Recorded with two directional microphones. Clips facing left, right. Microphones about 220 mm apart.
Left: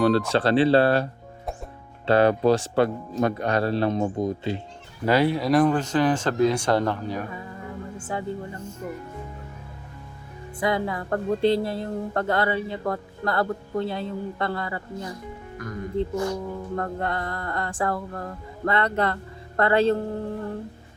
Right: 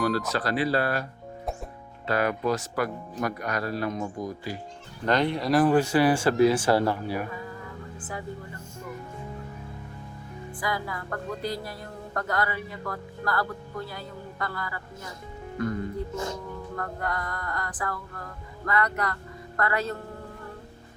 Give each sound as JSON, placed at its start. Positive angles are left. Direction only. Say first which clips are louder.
{"t": 0.0, "sound": "speech", "louder": "left 6 dB", "side_deg": 30}
{"t": 2.0, "sound": "speech", "louder": "left 7 dB", "side_deg": 30}
{"t": 5.0, "sound": "speech", "louder": "left 4 dB", "side_deg": 5}
{"t": 7.9, "sound": "speech", "louder": "left 6 dB", "side_deg": 30}
{"t": 10.6, "sound": "speech", "louder": "left 7 dB", "side_deg": 25}
{"t": 15.5, "sound": "speech", "louder": "left 1 dB", "side_deg": -30}
{"t": 16.7, "sound": "speech", "louder": "left 4 dB", "side_deg": 25}